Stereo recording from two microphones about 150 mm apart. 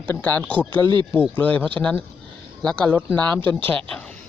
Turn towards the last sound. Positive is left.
turn(degrees=10)  # may be behind; listen again after turning